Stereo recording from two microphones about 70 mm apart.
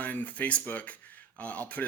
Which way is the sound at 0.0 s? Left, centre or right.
Left.